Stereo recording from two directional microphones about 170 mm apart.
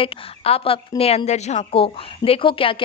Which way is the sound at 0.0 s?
30° left (ahead or behind).